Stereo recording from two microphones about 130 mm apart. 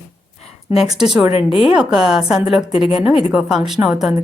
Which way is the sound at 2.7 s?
50° left (ahead or behind).